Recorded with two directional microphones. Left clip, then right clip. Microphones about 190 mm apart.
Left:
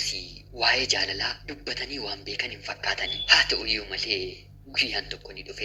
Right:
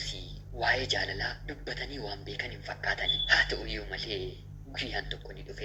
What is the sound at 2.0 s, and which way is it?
A man's voice, 50° left (ahead or behind).